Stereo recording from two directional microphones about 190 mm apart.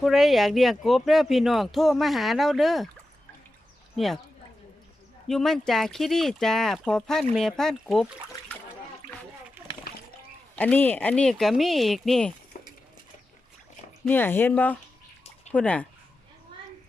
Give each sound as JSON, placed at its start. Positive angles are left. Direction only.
{"t": 0.0, "sound": "speech", "side_deg": 0}
{"t": 3.9, "sound": "speech", "side_deg": 0}
{"t": 5.3, "sound": "speech", "side_deg": 0}
{"t": 10.5, "sound": "speech", "side_deg": 5}
{"t": 12.5, "sound": "a sound", "side_deg": 45}
{"t": 14.0, "sound": "speech", "side_deg": 10}